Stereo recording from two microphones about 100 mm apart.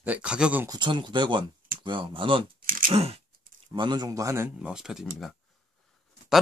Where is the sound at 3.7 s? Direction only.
50° right (ahead or behind); by 4.4 s 30° right (ahead or behind).